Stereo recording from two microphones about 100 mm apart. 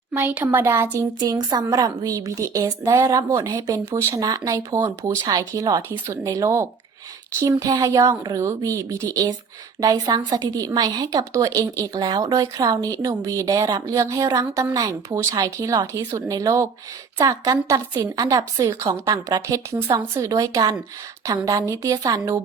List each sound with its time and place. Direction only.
0.1 s speech: 20° right (ahead or behind)
1.2 s a woman's voice: 45° right (ahead or behind)